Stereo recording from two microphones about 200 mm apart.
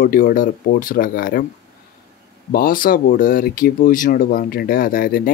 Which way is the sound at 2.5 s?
45° left (ahead or behind).